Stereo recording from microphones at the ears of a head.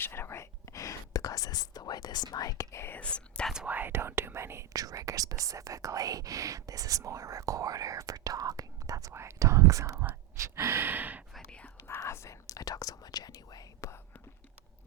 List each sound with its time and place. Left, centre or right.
0.0 s whispering: left
3.8 s speech: right
11.9 s speech: left